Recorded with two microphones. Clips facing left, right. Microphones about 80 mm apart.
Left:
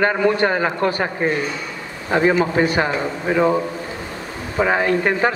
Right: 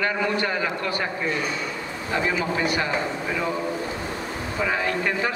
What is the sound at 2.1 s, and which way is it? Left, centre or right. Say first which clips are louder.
A man's voice: left 8 dB; left.